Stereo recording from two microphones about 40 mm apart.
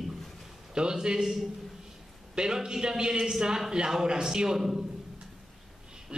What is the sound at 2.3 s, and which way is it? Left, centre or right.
A man's voice, right.